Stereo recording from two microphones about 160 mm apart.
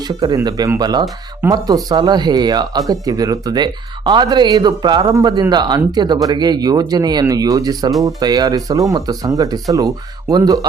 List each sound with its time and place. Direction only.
0.2 s speech: 25° right (ahead or behind)